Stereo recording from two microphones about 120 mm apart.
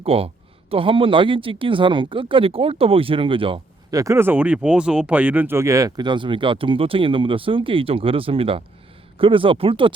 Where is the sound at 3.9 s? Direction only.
25° right (ahead or behind); by 9.9 s 50° right (ahead or behind).